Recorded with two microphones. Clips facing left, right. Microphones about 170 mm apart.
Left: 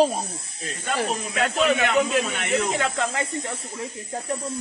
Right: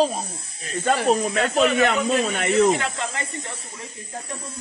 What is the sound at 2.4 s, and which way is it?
Speech, 35° right (ahead or behind).